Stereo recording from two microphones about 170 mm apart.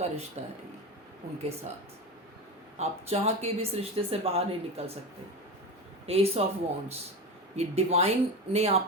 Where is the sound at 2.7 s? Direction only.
40° right (ahead or behind).